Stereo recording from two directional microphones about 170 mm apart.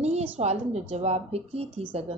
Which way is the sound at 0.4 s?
40° right (ahead or behind).